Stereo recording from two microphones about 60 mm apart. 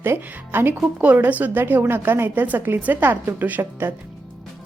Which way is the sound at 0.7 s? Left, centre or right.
Right.